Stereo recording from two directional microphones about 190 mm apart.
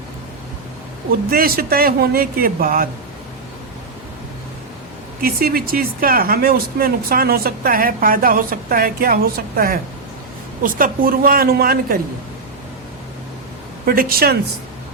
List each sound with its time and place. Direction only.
1.3 s a woman's voice: 50° right (ahead or behind)
5.2 s a woman's voice: 50° right (ahead or behind)
13.8 s a woman's voice: 50° right (ahead or behind)